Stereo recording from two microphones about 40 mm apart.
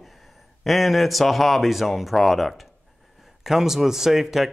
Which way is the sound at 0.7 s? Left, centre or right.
Centre.